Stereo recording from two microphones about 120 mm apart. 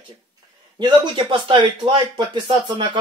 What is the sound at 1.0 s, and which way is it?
Speech, 45° right (ahead or behind).